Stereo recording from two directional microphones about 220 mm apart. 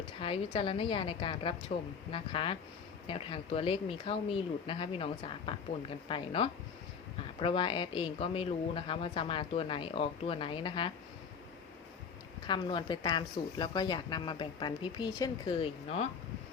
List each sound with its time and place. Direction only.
0.2 s speech: 25° left (ahead or behind)
12.5 s speech: 20° left (ahead or behind)